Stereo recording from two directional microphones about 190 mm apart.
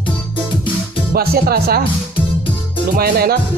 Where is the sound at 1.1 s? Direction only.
55° right (ahead or behind).